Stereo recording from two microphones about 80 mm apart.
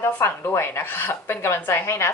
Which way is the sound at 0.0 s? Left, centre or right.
Left.